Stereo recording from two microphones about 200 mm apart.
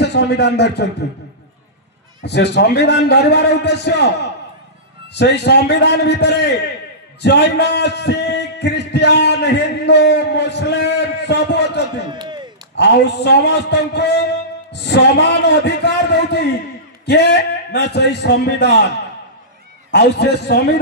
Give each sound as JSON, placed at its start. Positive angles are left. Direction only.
{"t": 0.0, "sound": "a man's voice", "side_deg": 60}
{"t": 2.2, "sound": "a man's voice", "side_deg": 60}
{"t": 5.1, "sound": "a man's voice", "side_deg": 60}
{"t": 12.1, "sound": "a sound", "side_deg": -20}
{"t": 12.7, "sound": "a man's voice", "side_deg": 60}
{"t": 19.9, "sound": "a man's voice", "side_deg": 60}